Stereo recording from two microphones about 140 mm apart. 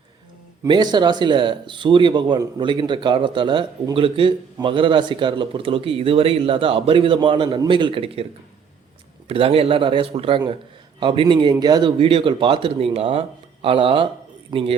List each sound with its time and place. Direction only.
0.6 s speech: 30° right (ahead or behind)
9.3 s speech: 45° right (ahead or behind)